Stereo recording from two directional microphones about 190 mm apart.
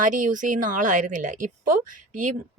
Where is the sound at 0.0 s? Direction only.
45° right (ahead or behind).